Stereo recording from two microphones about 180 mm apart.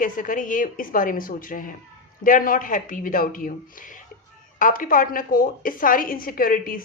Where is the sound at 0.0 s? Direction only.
45° left (ahead or behind).